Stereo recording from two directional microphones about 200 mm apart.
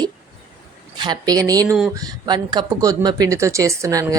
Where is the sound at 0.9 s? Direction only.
20° right (ahead or behind).